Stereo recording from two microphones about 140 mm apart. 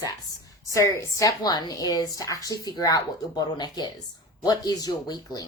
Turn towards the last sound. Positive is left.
turn(degrees=25)  # may be behind; listen again after turning